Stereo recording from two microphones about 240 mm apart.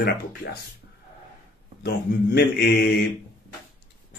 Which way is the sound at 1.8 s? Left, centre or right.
Left.